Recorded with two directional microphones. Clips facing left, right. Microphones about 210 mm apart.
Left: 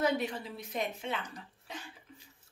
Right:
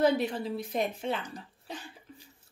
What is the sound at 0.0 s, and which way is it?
Speech, 35° right (ahead or behind).